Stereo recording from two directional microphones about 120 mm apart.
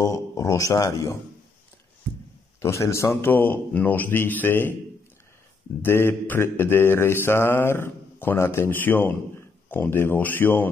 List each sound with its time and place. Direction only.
0.0 s mantra: 30° left (ahead or behind)
2.6 s a man's voice: 25° left (ahead or behind)
5.8 s mantra: 20° left (ahead or behind)